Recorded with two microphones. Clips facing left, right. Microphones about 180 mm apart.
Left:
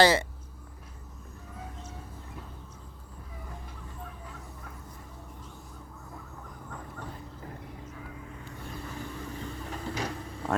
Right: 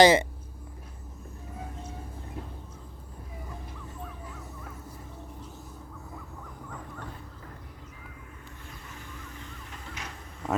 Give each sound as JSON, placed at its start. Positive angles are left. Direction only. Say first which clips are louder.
{"t": 0.0, "sound": "speech", "louder": "right 4 dB", "side_deg": -20}
{"t": 8.8, "sound": "vehicle", "louder": "left 8 dB", "side_deg": 35}